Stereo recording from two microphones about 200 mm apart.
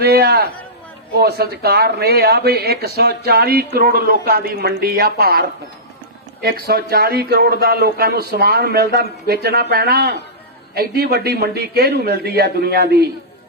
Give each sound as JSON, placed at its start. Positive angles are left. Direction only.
{"t": 0.0, "sound": "a man's voice", "side_deg": -50}